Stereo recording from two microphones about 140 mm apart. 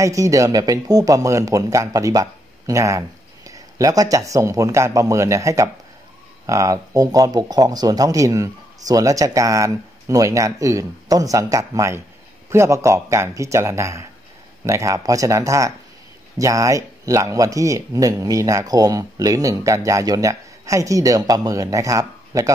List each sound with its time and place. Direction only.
0.0 s speech: 25° right (ahead or behind)